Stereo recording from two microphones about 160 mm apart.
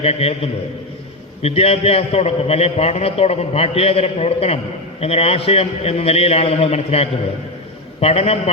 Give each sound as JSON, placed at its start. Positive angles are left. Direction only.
{"t": 0.0, "sound": "a man's voice", "side_deg": 40}